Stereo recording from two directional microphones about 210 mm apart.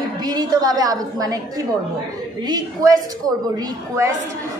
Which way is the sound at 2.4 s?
20° right (ahead or behind).